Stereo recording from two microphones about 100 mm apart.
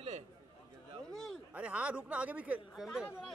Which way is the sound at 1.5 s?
10° right (ahead or behind).